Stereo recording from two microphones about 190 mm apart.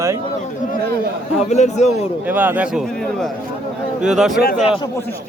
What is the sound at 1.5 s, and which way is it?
Speech, 35° left (ahead or behind).